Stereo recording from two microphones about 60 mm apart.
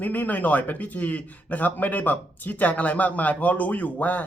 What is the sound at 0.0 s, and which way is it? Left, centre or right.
A man's voice, left.